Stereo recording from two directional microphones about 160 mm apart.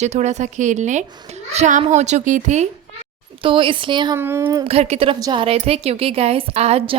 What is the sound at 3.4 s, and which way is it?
Speech, 30° right (ahead or behind).